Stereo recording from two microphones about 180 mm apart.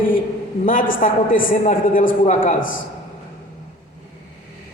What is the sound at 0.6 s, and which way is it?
A man's voice, 50° left (ahead or behind).